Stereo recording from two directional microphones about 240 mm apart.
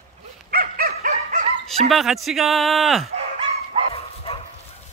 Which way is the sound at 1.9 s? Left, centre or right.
Centre.